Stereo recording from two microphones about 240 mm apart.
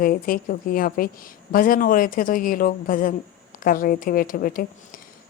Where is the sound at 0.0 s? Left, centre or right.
Left.